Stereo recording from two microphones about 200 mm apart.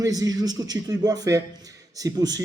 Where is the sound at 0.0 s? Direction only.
20° right (ahead or behind).